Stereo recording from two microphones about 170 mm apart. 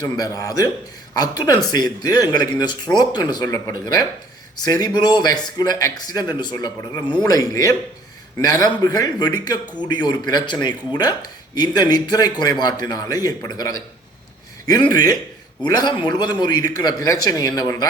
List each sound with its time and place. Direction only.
0.0 s speech: 20° left (ahead or behind)